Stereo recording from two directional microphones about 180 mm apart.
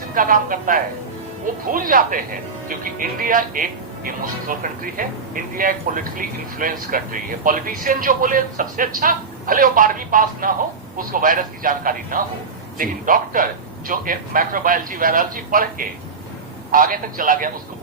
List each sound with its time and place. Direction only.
0.1 s speech: 50° right (ahead or behind)